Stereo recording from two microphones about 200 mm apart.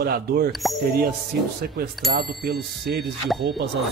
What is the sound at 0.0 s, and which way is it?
Speech, 50° right (ahead or behind).